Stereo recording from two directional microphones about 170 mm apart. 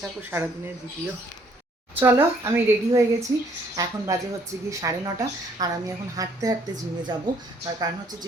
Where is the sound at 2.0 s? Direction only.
15° right (ahead or behind).